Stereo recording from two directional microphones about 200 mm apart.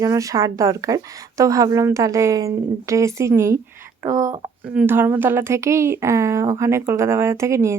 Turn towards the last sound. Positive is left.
turn(degrees=-15)  # may be behind; listen again after turning